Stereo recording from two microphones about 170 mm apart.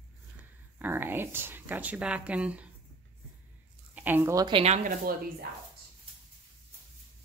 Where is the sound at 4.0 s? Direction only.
10° right (ahead or behind).